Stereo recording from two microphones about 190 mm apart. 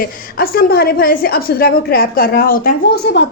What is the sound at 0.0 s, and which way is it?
A woman's voice, 55° left (ahead or behind).